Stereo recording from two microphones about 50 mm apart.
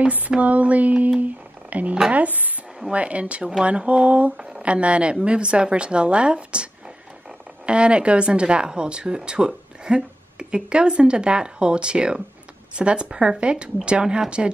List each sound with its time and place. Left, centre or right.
0.0 s speech: right